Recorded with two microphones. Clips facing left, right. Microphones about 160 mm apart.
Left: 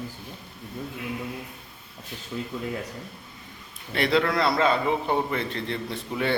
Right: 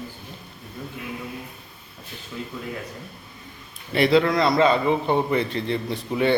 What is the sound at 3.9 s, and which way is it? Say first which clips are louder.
A man's voice: right 5 dB; centre (ahead or behind).